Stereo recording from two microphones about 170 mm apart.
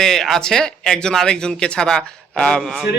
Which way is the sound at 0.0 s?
5° left (ahead or behind).